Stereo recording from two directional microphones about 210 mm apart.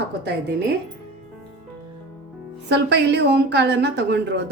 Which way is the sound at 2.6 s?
55° right (ahead or behind).